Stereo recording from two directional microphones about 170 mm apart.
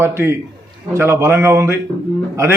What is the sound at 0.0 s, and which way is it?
A man's voice, 15° right (ahead or behind).